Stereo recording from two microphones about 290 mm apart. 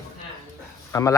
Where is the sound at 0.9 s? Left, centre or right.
Centre.